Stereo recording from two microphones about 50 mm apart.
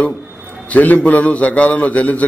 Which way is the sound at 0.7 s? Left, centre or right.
Left.